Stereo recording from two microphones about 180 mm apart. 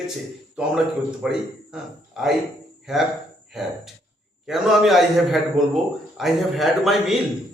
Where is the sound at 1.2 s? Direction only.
5° right (ahead or behind).